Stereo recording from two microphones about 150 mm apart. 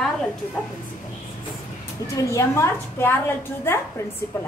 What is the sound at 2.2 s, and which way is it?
A woman's voice, 20° left (ahead or behind).